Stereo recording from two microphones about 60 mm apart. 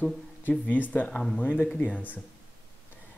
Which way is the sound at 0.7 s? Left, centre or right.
Left.